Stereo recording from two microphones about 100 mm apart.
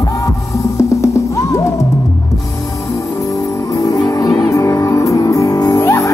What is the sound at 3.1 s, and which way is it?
Music, 35° left (ahead or behind).